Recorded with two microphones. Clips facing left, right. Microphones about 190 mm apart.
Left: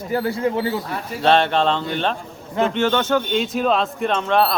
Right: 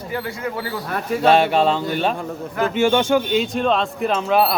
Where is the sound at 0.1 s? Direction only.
35° left (ahead or behind).